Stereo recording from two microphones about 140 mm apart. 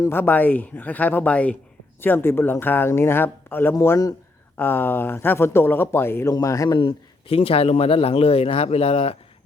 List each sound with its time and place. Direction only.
0.0 s speech: 15° left (ahead or behind)
6.7 s a man's voice: 40° left (ahead or behind)